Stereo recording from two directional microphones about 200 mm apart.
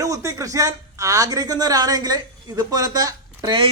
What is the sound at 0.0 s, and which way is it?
A woman's voice, 15° right (ahead or behind).